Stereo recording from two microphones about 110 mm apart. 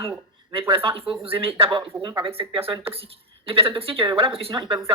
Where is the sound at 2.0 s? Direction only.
35° right (ahead or behind).